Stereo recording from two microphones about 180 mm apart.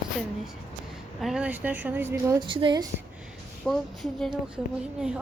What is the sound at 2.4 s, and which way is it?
Speech, 25° right (ahead or behind).